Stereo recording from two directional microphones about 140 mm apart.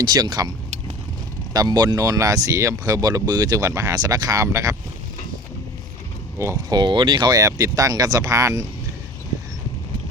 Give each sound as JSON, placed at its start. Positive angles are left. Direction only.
{"t": 0.0, "sound": "speech", "side_deg": -30}
{"t": 1.5, "sound": "speech", "side_deg": -30}
{"t": 6.4, "sound": "speech", "side_deg": -20}
{"t": 6.7, "sound": "speech", "side_deg": -35}